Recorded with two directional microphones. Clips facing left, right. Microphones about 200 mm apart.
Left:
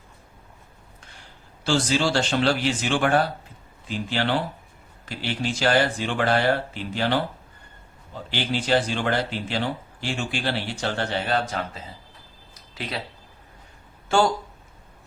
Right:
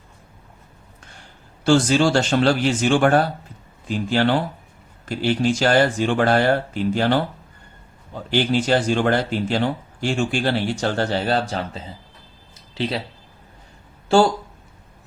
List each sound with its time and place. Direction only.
1.6 s speech: 50° right (ahead or behind); by 13.0 s 30° right (ahead or behind)